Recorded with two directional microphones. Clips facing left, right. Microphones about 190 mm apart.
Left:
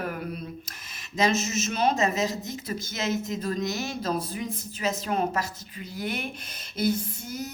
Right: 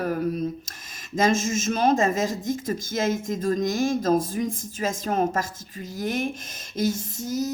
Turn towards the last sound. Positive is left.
turn(degrees=-40)  # may be behind; listen again after turning